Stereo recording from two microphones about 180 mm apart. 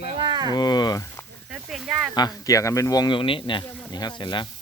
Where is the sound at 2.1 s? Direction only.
20° left (ahead or behind).